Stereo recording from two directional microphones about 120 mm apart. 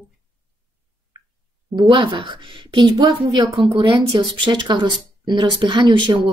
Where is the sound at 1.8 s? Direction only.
40° right (ahead or behind).